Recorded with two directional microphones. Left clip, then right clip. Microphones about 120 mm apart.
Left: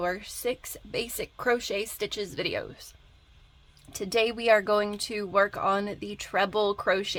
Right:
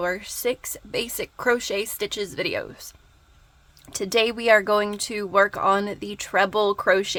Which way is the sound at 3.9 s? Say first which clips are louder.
Right 4 dB; 35° right (ahead or behind).